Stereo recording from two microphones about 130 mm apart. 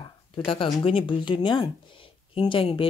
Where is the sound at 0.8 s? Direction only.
40° left (ahead or behind).